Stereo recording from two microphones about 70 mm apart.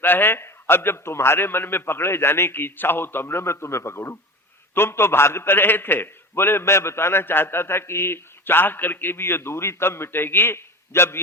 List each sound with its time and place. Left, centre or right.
0.0 s a man's voice: left